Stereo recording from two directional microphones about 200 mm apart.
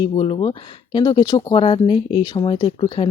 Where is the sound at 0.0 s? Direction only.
25° left (ahead or behind).